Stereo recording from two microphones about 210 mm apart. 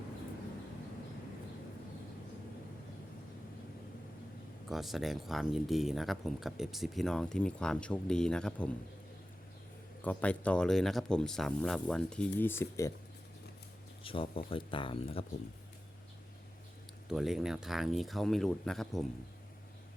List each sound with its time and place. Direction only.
4.7 s speech: centre (ahead or behind)
10.0 s speech: 5° left (ahead or behind)
14.0 s speech: 25° left (ahead or behind)
17.1 s speech: centre (ahead or behind)